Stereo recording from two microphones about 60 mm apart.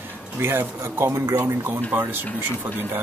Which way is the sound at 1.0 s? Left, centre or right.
Right.